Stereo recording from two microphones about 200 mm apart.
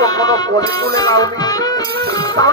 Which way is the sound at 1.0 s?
20° left (ahead or behind).